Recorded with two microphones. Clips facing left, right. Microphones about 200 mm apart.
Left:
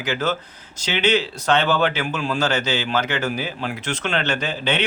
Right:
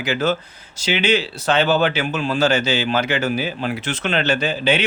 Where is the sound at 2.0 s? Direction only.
30° right (ahead or behind).